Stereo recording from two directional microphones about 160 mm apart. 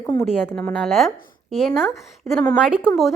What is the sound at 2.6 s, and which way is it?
Speech, 5° right (ahead or behind).